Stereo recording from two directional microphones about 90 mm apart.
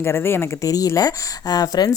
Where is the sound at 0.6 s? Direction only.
40° left (ahead or behind).